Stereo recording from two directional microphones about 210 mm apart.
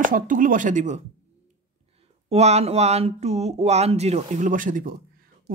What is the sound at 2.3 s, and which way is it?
Speech, 30° right (ahead or behind).